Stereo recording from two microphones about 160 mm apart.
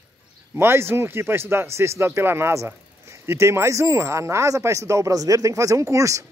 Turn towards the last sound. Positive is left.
turn(degrees=-20)  # may be behind; listen again after turning